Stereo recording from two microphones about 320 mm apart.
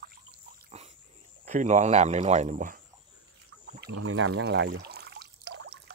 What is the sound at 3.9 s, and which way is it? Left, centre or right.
Speech, right.